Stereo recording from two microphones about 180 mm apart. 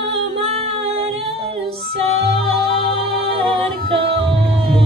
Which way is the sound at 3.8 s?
30° right (ahead or behind).